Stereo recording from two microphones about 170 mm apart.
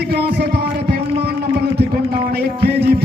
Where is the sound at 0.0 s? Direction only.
70° right (ahead or behind).